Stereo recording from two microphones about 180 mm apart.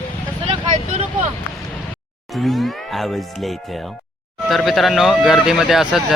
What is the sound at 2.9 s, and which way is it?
Speech, centre (ahead or behind).